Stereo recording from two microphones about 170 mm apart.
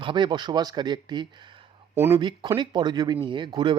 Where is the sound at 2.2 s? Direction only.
25° right (ahead or behind).